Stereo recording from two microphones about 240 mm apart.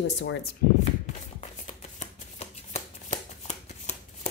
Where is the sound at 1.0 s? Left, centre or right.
Left.